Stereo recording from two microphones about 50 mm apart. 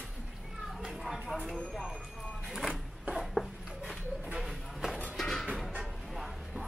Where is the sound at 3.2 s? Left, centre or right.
Centre.